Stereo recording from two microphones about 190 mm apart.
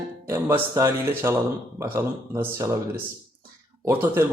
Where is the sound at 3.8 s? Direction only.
10° right (ahead or behind).